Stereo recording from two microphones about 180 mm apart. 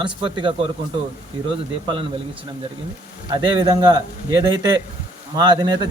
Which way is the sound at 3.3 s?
20° right (ahead or behind).